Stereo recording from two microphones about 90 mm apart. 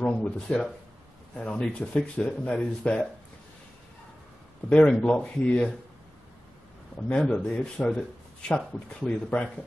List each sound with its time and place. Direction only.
0.5 s speech: 10° left (ahead or behind)
4.6 s speech: 10° left (ahead or behind)
7.0 s speech: 10° left (ahead or behind)